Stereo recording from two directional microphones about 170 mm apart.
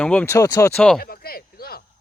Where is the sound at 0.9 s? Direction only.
60° left (ahead or behind).